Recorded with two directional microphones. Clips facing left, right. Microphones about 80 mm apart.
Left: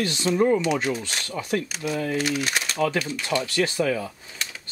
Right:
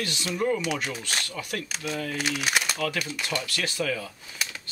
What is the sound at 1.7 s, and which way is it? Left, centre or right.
Speech, centre.